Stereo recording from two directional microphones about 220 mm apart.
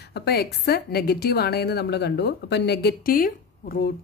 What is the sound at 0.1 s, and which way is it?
A woman's voice, 45° left (ahead or behind).